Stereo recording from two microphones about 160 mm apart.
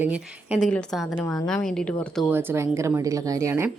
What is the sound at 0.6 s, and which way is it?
Speech, 5° left (ahead or behind).